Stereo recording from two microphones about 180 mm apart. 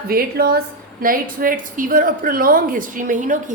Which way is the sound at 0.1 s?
60° right (ahead or behind).